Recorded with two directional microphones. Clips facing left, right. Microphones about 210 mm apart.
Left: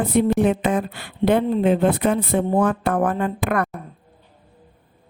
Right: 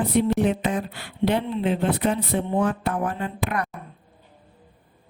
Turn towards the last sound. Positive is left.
turn(degrees=50)  # may be behind; listen again after turning